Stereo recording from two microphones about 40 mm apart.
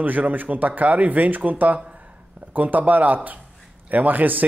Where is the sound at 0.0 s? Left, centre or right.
Right.